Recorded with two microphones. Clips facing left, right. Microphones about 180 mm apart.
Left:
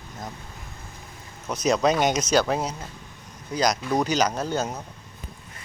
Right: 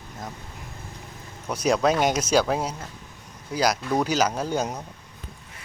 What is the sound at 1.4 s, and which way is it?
Speech, 10° right (ahead or behind).